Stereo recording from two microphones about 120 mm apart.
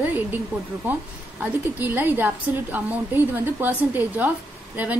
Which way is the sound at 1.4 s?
15° right (ahead or behind).